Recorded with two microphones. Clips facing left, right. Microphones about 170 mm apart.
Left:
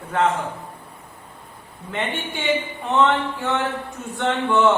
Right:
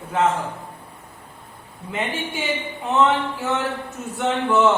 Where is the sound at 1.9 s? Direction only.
5° right (ahead or behind).